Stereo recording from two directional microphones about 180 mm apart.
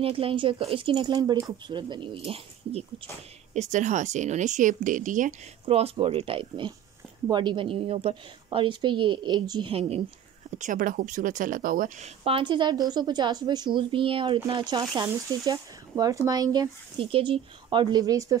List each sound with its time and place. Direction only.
0.0 s speech: 30° right (ahead or behind)
1.1 s speech: 20° right (ahead or behind)
10.6 s speech: 50° right (ahead or behind)
12.3 s speech: 30° right (ahead or behind)